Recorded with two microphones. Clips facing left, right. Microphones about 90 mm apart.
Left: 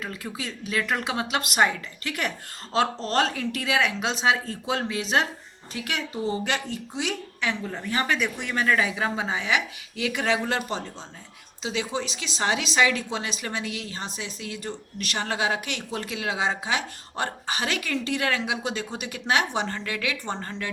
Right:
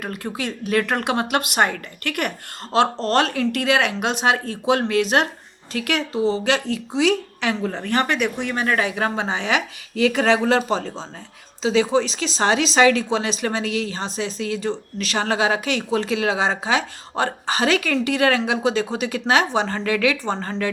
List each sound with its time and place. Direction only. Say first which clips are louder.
0.0 s a woman's voice: right 6 dB; 60° right (ahead or behind)
3.0 s speech: right 5 dB; 70° right (ahead or behind)
6.1 s speech: right 7 dB; 25° right (ahead or behind)
6.4 s a woman's voice: right 7 dB; 90° right
7.9 s a woman's voice: right 4 dB; 70° right (ahead or behind); by 20.7 s 90° right